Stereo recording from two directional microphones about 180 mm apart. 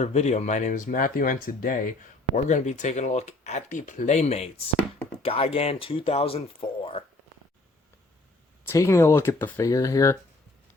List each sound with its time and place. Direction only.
0.0 s speech: 40° left (ahead or behind)
8.6 s speech: 15° left (ahead or behind)